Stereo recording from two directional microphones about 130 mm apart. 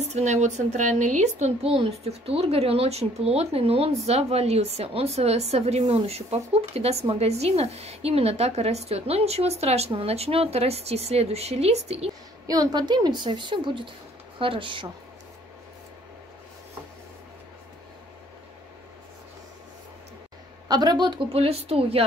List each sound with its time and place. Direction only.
0.0 s a woman's voice: 60° right (ahead or behind)
12.4 s a woman's voice: 30° right (ahead or behind)
20.6 s a woman's voice: 35° right (ahead or behind)
21.3 s a woman's voice: 50° right (ahead or behind)